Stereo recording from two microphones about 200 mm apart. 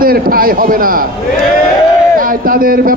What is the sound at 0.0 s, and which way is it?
A man's voice, 45° right (ahead or behind).